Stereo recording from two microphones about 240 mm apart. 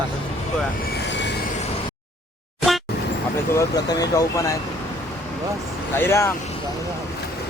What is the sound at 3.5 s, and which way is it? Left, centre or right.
Speech, centre.